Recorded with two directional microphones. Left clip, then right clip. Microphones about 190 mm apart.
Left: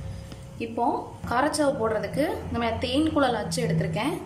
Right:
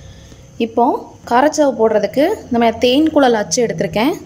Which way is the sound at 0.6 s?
40° right (ahead or behind).